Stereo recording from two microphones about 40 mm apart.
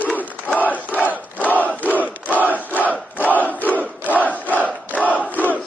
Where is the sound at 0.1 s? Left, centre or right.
Left.